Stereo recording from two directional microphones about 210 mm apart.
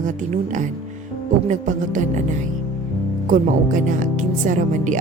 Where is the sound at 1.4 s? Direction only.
35° right (ahead or behind).